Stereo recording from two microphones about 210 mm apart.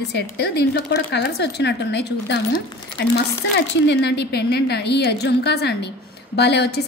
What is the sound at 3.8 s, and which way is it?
A woman's voice, 55° left (ahead or behind).